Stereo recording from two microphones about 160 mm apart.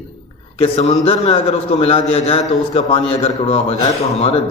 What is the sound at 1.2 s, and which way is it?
A man's voice, 40° left (ahead or behind).